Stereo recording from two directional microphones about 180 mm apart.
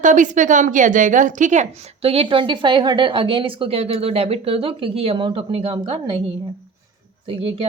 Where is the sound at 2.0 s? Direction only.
30° right (ahead or behind).